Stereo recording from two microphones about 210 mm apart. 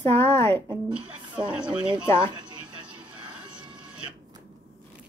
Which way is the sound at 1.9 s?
20° right (ahead or behind).